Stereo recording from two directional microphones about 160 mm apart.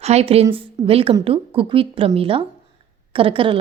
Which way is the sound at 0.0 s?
40° right (ahead or behind).